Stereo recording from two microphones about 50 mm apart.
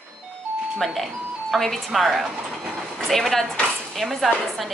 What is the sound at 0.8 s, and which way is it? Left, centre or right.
Speech, centre.